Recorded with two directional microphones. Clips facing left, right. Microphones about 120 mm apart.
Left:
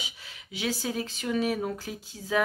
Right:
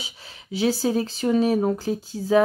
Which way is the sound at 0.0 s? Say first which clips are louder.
Right 2 dB; 35° right (ahead or behind).